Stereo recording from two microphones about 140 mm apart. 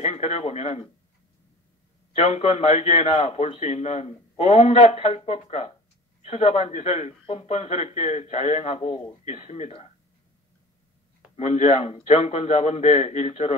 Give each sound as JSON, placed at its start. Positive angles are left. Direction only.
{"t": 0.0, "sound": "a man's voice", "side_deg": 50}
{"t": 2.1, "sound": "a man's voice", "side_deg": 50}
{"t": 11.3, "sound": "a man's voice", "side_deg": 55}